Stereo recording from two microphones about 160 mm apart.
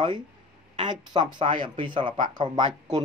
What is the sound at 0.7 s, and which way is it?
Speech, 25° right (ahead or behind).